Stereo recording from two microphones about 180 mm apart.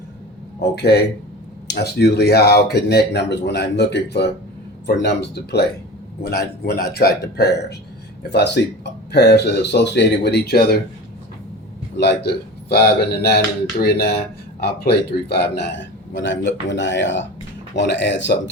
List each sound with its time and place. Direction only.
0.6 s speech: 65° left (ahead or behind)
11.9 s speech: 70° left (ahead or behind)
16.1 s a man's voice: 90° left
17.7 s speech: 75° left (ahead or behind)